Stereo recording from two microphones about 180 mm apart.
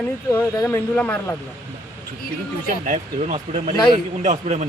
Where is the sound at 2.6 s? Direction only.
45° right (ahead or behind).